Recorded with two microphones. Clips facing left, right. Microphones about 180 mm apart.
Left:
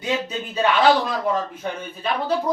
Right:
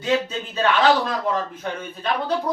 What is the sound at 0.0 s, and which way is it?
Speech, 15° left (ahead or behind).